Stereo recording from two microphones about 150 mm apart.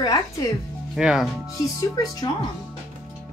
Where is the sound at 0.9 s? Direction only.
5° right (ahead or behind).